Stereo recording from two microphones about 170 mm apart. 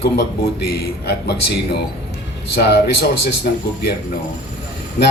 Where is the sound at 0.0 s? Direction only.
75° left (ahead or behind).